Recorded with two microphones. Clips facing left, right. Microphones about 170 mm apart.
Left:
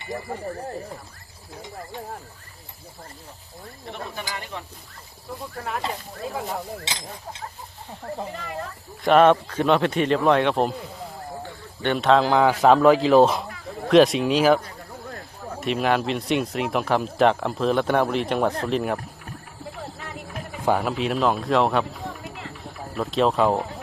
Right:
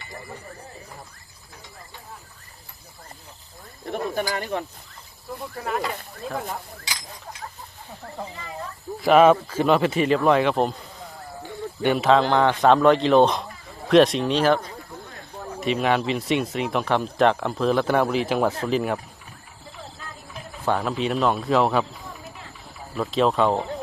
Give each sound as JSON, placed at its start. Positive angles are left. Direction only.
{"t": 3.8, "sound": "speech", "side_deg": -50}
{"t": 5.3, "sound": "speech", "side_deg": 0}
{"t": 6.8, "sound": "speech", "side_deg": 25}
{"t": 8.3, "sound": "speech", "side_deg": 75}
{"t": 9.0, "sound": "speech", "side_deg": -5}
{"t": 11.8, "sound": "speech", "side_deg": -5}
{"t": 20.0, "sound": "music", "side_deg": 70}
{"t": 20.7, "sound": "speech", "side_deg": 10}
{"t": 22.2, "sound": "a sound", "side_deg": 75}
{"t": 23.0, "sound": "speech", "side_deg": 0}